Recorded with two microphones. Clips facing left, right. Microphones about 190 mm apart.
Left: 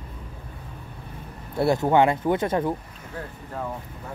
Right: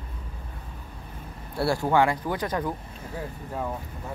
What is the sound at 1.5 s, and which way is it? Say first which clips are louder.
Speech: left 3 dB; 20° left (ahead or behind).